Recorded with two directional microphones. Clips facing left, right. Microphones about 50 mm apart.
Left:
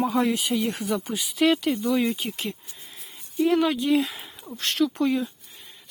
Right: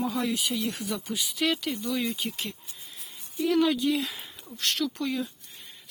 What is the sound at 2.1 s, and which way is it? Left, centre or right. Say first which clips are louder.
Speech: left 2 dB; centre.